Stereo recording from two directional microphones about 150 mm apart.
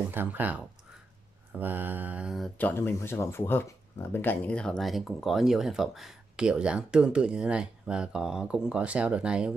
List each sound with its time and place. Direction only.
0.1 s mantra: 15° right (ahead or behind)
2.6 s speech: 15° left (ahead or behind); by 9.5 s 5° right (ahead or behind)